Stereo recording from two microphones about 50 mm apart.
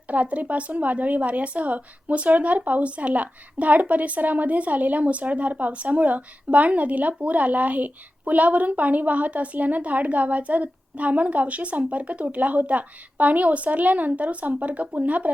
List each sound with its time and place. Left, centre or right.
0.1 s speech: right